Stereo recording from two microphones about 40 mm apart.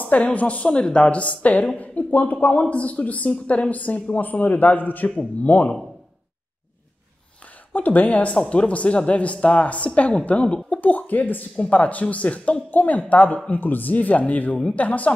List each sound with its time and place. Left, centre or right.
0.0 s a woman's voice: left
7.7 s speech: left
8.3 s a woman's voice: left
10.8 s speech: left
11.5 s a woman's voice: left
13.5 s a woman's voice: left